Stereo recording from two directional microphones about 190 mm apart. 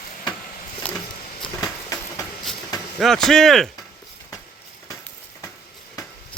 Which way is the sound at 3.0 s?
Centre (ahead or behind).